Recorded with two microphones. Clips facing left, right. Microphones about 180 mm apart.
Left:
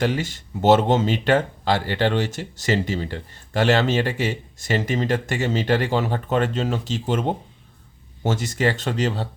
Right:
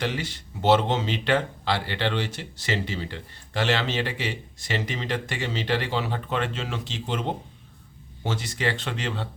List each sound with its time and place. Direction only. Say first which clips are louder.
0.0 s speech: left 6 dB; 45° left (ahead or behind)